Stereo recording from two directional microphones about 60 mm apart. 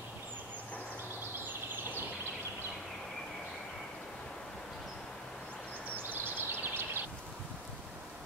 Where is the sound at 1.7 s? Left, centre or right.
Right.